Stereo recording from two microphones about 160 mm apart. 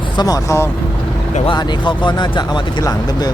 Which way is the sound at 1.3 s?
30° left (ahead or behind).